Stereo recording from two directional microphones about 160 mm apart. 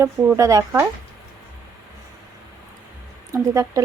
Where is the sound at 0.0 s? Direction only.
20° right (ahead or behind).